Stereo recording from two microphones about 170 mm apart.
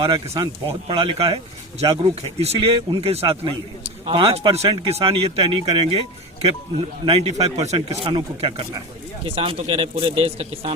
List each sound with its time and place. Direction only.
0.0 s speech: 25° right (ahead or behind)
7.0 s speech: 30° right (ahead or behind)
7.8 s speech: 30° right (ahead or behind)